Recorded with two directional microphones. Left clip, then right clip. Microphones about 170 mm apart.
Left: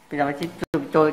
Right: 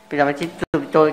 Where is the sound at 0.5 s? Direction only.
20° right (ahead or behind).